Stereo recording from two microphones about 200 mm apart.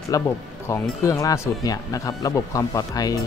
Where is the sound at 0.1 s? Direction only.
15° left (ahead or behind).